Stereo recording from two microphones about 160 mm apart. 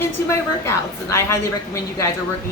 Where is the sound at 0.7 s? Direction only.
15° left (ahead or behind).